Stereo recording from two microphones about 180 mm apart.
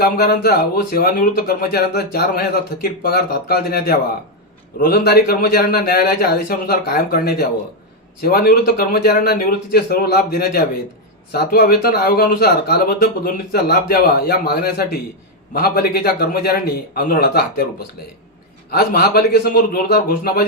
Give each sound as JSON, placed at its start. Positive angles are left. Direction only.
{"t": 0.0, "sound": "speech", "side_deg": 55}
{"t": 18.7, "sound": "speech", "side_deg": 60}